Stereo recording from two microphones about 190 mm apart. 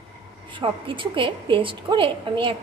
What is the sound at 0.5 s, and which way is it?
A woman's voice, 25° right (ahead or behind).